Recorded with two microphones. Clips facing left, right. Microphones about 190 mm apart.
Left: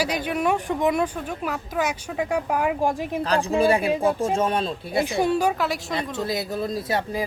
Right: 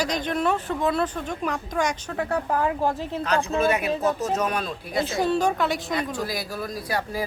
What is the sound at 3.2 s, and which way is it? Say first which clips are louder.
A man's voice: left 2 dB; 35° left (ahead or behind).